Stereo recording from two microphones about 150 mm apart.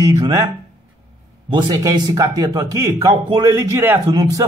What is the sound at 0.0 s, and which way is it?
Speech, 25° right (ahead or behind).